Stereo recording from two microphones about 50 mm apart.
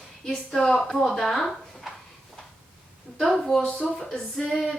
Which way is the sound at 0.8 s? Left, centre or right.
Centre.